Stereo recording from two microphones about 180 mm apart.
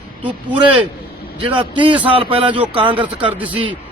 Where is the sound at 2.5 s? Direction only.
10° right (ahead or behind).